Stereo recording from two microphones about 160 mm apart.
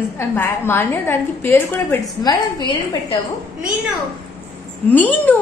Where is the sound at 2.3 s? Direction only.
25° left (ahead or behind).